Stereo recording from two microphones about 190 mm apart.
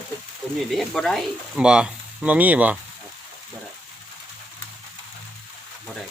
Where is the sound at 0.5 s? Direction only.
Centre (ahead or behind).